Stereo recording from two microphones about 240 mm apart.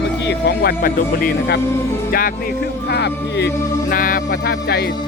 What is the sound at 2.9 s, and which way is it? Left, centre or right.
Speech, left.